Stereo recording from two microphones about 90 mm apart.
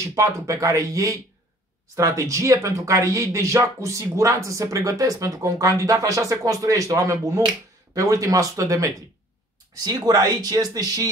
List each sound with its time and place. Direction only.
0.0 s speech: 35° right (ahead or behind)